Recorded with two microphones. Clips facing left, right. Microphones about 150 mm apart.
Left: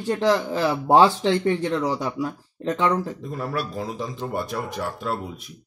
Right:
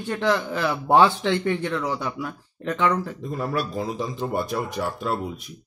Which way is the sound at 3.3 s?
Centre (ahead or behind).